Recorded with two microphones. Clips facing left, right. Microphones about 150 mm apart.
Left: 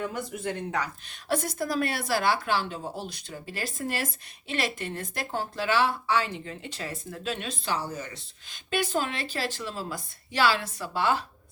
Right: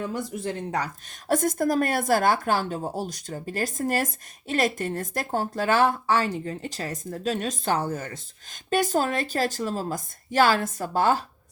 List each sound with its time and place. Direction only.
0.4 s speech: 35° right (ahead or behind)
1.3 s speech: 45° right (ahead or behind)
8.7 s speech: 40° right (ahead or behind)